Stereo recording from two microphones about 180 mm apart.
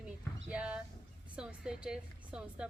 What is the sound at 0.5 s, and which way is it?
A woman's voice, 5° right (ahead or behind).